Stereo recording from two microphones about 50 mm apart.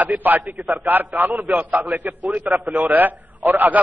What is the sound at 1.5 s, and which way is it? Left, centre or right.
A man's voice, right.